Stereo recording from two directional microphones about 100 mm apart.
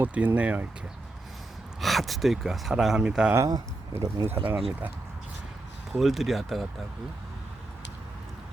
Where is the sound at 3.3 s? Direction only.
30° right (ahead or behind).